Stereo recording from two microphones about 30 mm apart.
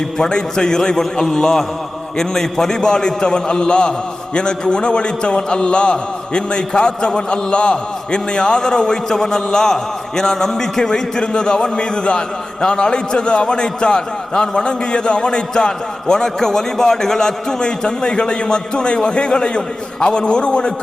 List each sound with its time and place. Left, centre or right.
0.2 s a man's voice: left